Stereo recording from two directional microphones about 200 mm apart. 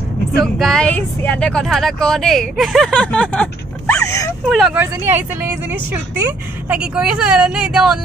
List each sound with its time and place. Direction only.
0.4 s speech: centre (ahead or behind)
4.5 s speech: 5° right (ahead or behind)